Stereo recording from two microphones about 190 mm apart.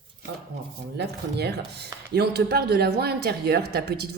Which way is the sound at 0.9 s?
60° right (ahead or behind).